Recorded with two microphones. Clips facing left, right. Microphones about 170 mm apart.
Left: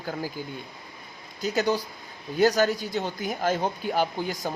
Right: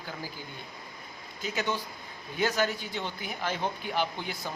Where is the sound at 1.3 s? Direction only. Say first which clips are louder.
Left 7 dB; 40° left (ahead or behind).